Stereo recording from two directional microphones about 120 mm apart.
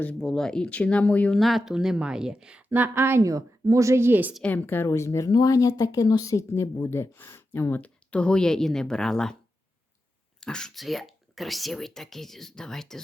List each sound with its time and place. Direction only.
0.0 s speech: 10° left (ahead or behind)
1.4 s a woman's voice: centre (ahead or behind)
4.4 s speech: 15° left (ahead or behind)
10.4 s speech: 5° left (ahead or behind)